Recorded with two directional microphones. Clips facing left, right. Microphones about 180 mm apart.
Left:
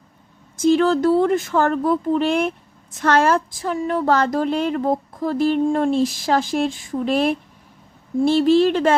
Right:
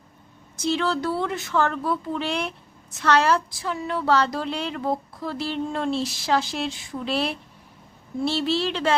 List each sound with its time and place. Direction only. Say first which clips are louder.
0.6 s speech: left 9 dB; 45° left (ahead or behind)